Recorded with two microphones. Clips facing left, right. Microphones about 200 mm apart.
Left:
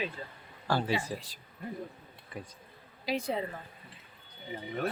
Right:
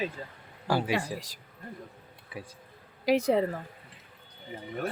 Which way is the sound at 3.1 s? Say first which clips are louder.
Right 8 dB; 80° right.